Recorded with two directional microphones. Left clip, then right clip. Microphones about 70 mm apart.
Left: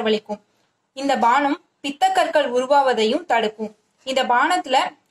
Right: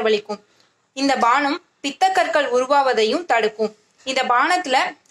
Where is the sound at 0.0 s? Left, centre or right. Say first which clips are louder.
Right 2 dB; left.